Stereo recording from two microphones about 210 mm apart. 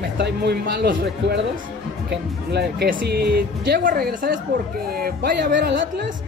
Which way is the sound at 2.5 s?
50° right (ahead or behind).